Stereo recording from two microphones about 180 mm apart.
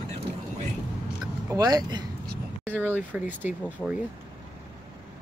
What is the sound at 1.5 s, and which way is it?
Speech, 20° right (ahead or behind).